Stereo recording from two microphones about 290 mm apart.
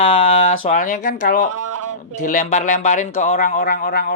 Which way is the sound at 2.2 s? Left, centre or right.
Left.